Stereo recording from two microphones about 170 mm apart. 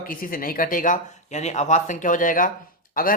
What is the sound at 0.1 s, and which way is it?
Speech, 55° left (ahead or behind).